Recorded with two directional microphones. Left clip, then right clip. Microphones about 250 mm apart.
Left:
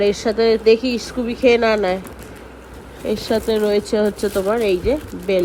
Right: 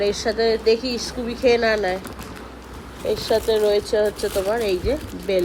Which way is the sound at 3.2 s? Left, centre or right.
Left.